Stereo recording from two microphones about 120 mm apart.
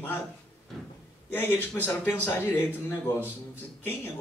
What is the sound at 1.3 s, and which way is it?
Speech, 15° left (ahead or behind).